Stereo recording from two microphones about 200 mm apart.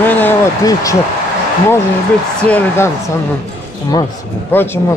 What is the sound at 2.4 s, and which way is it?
Speech, 5° left (ahead or behind).